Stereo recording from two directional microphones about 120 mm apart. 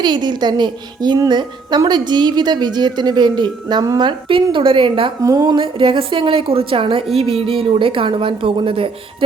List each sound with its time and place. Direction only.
0.0 s a woman's voice: 35° right (ahead or behind)
4.3 s a woman's voice: 50° right (ahead or behind)
5.2 s speech: 30° right (ahead or behind)
5.5 s a woman's voice: 50° right (ahead or behind)